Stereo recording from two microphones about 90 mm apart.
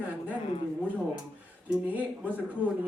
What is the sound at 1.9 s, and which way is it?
Speech, 20° right (ahead or behind).